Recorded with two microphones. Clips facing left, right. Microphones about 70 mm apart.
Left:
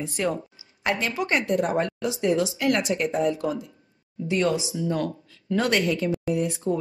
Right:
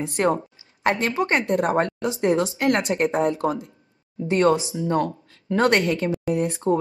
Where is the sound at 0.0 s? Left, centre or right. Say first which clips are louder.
Right 5 dB; right.